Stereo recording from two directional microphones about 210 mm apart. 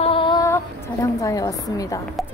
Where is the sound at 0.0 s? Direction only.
25° left (ahead or behind).